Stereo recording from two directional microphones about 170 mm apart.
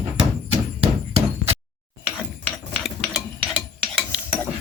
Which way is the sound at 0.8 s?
35° right (ahead or behind).